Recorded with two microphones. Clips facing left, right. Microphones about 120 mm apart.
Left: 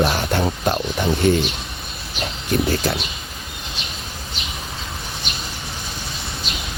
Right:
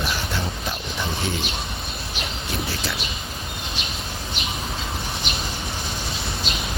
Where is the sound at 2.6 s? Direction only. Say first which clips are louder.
Left 8 dB; 50° left (ahead or behind).